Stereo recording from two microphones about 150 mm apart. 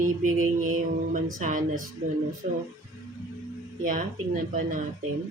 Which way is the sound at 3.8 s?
65° right (ahead or behind).